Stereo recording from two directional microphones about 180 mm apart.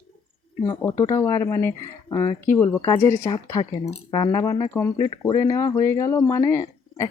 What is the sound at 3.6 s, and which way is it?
Speech, 30° left (ahead or behind).